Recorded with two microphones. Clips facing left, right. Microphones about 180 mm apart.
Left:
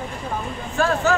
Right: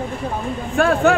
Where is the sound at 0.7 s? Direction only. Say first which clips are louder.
Right 4 dB; 55° right (ahead or behind).